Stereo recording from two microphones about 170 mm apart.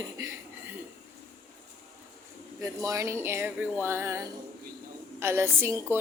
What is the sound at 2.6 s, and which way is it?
Music, 20° right (ahead or behind).